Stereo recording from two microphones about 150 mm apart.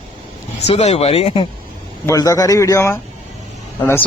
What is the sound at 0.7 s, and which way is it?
Speech, 45° left (ahead or behind).